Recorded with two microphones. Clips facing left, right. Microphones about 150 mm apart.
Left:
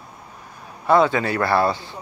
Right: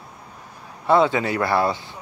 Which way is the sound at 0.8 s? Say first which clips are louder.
Left 1 dB; 20° right (ahead or behind).